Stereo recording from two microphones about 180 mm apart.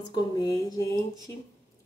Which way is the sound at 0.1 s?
20° left (ahead or behind).